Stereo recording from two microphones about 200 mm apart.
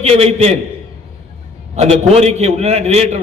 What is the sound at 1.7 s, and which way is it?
A man's voice, 35° right (ahead or behind).